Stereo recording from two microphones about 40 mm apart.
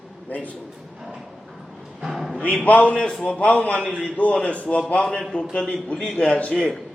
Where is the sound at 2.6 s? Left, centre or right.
Left.